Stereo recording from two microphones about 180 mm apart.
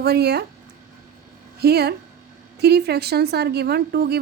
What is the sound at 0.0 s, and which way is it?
Speech, 65° right (ahead or behind).